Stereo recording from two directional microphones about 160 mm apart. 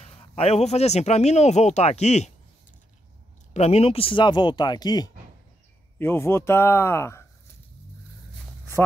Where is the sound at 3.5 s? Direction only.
45° left (ahead or behind); by 5.1 s 25° left (ahead or behind).